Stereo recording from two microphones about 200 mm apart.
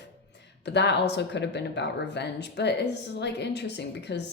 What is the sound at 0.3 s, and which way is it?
Speech, 60° left (ahead or behind).